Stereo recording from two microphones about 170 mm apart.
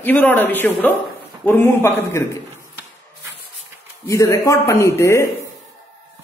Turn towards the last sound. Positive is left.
turn(degrees=15)  # may be behind; listen again after turning